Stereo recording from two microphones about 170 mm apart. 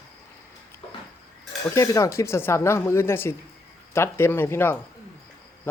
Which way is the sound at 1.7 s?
20° left (ahead or behind).